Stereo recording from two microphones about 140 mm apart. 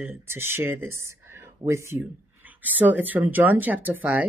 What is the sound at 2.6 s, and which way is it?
Speech, 10° right (ahead or behind).